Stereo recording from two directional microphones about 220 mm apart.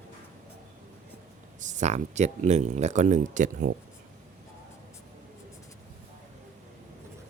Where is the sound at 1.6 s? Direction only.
35° right (ahead or behind).